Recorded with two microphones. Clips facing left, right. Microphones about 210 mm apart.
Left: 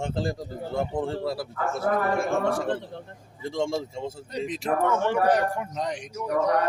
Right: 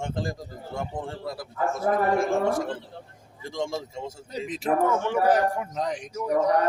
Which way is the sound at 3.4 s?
30° left (ahead or behind).